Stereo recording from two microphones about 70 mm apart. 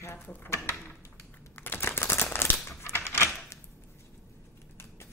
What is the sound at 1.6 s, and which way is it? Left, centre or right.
Crumpling, left.